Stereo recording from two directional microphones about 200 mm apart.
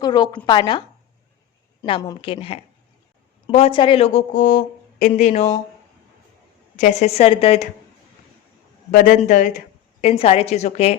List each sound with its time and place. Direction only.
0.0 s a woman's voice: 20° left (ahead or behind)
6.7 s speech: 35° left (ahead or behind)
8.9 s speech: 45° left (ahead or behind)